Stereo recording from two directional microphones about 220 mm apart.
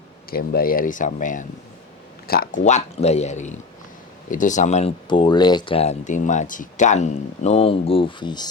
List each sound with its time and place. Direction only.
0.3 s speech: 45° left (ahead or behind); by 8.4 s 20° left (ahead or behind)